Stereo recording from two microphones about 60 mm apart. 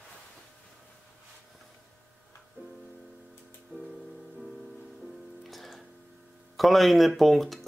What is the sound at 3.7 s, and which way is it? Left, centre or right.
Music, right.